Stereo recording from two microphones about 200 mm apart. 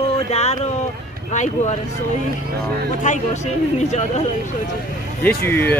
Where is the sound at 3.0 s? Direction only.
40° left (ahead or behind).